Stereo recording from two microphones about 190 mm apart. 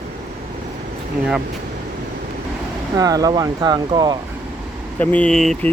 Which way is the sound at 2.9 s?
20° right (ahead or behind).